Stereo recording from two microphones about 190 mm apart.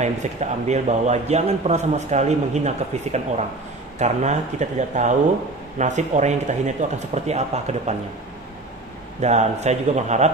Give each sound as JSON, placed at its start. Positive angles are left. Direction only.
{"t": 0.0, "sound": "a man's voice", "side_deg": -35}
{"t": 9.2, "sound": "a man's voice", "side_deg": -35}